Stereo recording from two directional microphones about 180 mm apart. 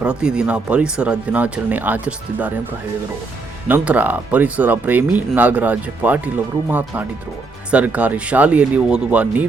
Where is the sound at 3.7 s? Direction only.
10° right (ahead or behind).